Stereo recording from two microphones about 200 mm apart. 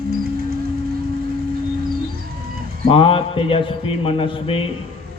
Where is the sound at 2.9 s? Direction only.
25° left (ahead or behind).